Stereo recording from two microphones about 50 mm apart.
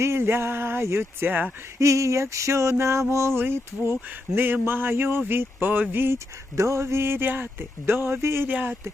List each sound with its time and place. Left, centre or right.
0.0 s speech: right
1.8 s a sound: right
3.3 s speech: right
4.4 s speech: right
6.6 s speech: right
8.4 s speech: right